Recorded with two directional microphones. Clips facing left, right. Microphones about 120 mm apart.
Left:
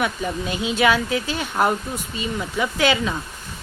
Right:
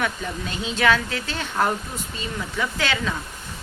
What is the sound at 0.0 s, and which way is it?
Speech, 15° left (ahead or behind).